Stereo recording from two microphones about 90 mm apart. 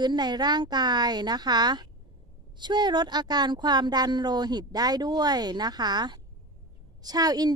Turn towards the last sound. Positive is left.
turn(degrees=-45)  # may be behind; listen again after turning